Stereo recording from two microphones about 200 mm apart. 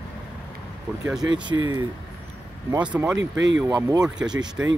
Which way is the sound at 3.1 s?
65° right (ahead or behind).